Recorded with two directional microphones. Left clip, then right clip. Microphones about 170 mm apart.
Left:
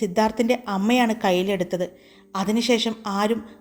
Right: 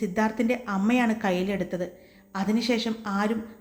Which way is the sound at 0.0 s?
35° left (ahead or behind).